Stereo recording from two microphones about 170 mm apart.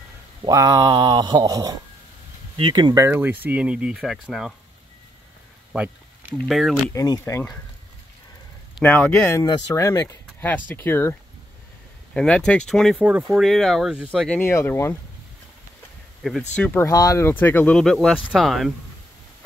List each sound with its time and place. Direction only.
0.5 s speech: 20° right (ahead or behind); by 4.6 s centre (ahead or behind)
5.7 s a sound: 5° right (ahead or behind)
6.3 s speech: centre (ahead or behind)
6.9 s speech: 20° left (ahead or behind)
8.8 s speech: 10° left (ahead or behind)
14.3 s speech: 15° left (ahead or behind)
16.2 s speech: centre (ahead or behind)